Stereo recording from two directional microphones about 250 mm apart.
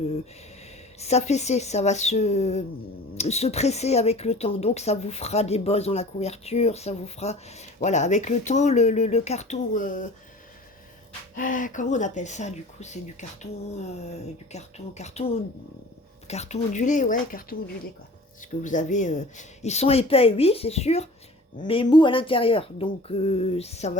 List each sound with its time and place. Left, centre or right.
0.9 s speech: left
11.3 s speech: left
18.6 s speech: left